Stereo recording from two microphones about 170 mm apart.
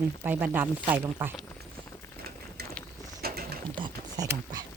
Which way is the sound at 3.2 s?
65° right (ahead or behind).